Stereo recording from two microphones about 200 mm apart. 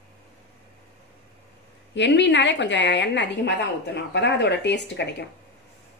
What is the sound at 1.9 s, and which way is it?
A woman's voice, 60° left (ahead or behind).